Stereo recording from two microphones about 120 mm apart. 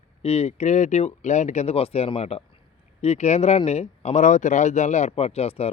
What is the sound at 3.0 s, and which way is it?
Speech, 70° left (ahead or behind).